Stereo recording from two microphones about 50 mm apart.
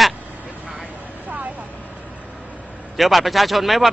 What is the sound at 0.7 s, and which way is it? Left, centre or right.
Vehicle, right.